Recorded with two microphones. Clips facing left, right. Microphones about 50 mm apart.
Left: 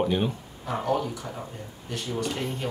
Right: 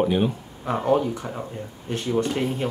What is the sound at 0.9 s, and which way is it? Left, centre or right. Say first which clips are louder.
Speech: right 6 dB; right.